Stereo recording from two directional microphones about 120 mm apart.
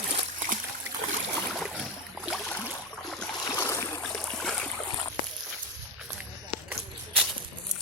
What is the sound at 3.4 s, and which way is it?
Boat, 25° left (ahead or behind).